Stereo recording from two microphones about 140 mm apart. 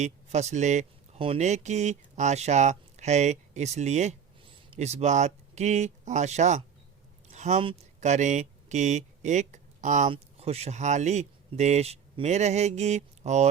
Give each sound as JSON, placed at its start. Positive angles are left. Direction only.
{"t": 0.0, "sound": "speech", "side_deg": -55}
{"t": 10.1, "sound": "speech", "side_deg": -45}